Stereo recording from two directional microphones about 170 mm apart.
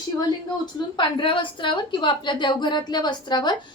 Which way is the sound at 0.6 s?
30° left (ahead or behind).